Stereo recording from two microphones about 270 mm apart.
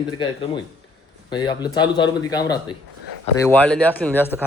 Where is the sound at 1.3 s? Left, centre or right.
Centre.